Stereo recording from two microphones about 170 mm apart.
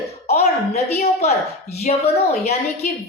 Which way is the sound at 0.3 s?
40° left (ahead or behind).